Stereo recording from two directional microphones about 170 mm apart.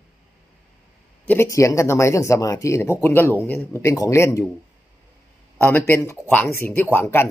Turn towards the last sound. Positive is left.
turn(degrees=15)  # may be behind; listen again after turning